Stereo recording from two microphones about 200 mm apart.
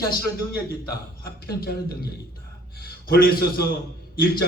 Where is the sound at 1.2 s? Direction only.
50° left (ahead or behind).